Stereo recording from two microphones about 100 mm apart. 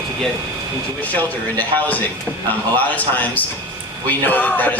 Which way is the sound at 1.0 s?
15° left (ahead or behind).